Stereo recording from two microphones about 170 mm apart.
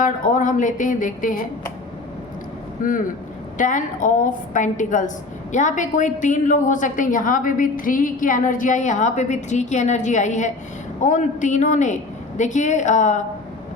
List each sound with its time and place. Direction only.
0.0 s a woman's voice: 50° left (ahead or behind)
2.8 s a woman's voice: 50° left (ahead or behind)